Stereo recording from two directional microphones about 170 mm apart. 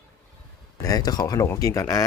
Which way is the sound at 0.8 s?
20° left (ahead or behind).